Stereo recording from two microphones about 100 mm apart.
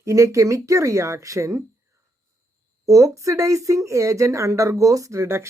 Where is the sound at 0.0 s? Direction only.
30° right (ahead or behind).